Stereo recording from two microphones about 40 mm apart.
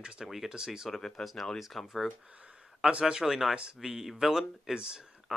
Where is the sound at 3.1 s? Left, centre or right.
Centre.